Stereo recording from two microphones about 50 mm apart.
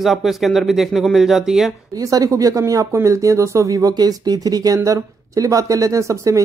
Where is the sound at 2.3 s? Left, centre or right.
Right.